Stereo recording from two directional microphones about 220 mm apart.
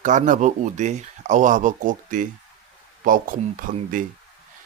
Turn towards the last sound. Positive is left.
turn(degrees=-40)  # may be behind; listen again after turning